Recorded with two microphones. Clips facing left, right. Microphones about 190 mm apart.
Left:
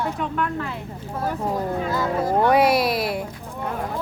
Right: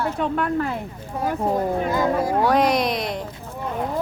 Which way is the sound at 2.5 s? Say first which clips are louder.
Left 1 dB; 5° left (ahead or behind).